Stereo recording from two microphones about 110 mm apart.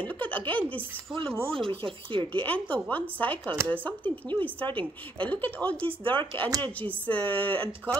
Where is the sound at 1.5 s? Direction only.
55° right (ahead or behind).